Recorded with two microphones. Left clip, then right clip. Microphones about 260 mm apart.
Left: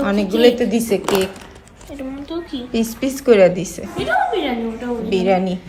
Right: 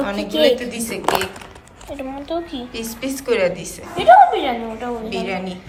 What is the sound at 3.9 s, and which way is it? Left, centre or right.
Speech, centre.